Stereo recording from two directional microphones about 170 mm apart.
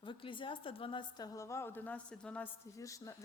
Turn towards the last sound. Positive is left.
turn(degrees=20)  # may be behind; listen again after turning